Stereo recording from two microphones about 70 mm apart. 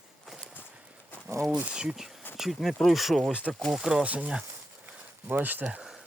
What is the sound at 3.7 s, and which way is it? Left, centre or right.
Speech, centre.